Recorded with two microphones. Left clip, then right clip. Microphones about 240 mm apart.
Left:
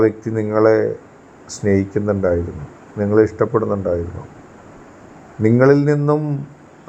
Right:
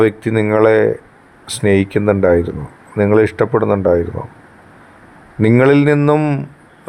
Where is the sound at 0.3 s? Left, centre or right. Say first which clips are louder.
Right 4 dB; right.